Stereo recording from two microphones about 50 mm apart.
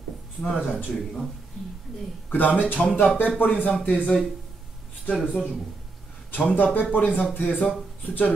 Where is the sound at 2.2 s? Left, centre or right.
Left.